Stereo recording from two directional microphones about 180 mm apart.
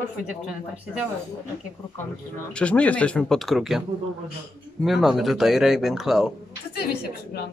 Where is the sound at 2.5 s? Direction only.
5° left (ahead or behind).